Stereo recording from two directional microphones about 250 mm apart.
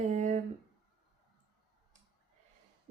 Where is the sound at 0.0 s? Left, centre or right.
Right.